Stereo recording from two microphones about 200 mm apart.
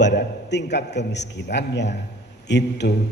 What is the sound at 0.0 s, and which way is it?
A man's voice, 60° left (ahead or behind).